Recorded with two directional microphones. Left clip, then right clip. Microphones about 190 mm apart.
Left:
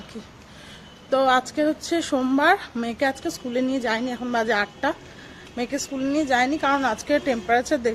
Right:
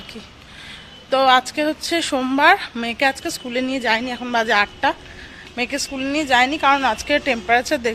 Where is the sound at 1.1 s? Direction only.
5° left (ahead or behind).